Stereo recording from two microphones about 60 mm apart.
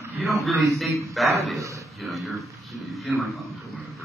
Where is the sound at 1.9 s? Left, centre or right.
Centre.